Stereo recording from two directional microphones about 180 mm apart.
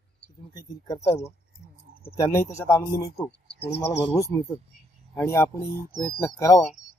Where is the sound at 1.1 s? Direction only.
35° left (ahead or behind).